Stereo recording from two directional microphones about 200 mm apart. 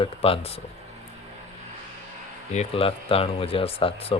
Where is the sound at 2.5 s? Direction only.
30° left (ahead or behind).